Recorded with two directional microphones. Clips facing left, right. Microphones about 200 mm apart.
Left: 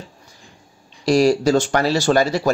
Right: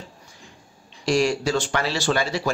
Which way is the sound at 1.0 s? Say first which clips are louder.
Left 6 dB; 35° left (ahead or behind).